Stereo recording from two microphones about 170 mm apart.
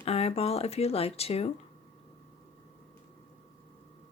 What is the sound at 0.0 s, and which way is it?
Speech, 35° left (ahead or behind).